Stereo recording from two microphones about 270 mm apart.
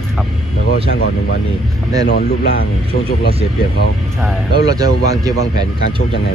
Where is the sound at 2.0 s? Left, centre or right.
Left.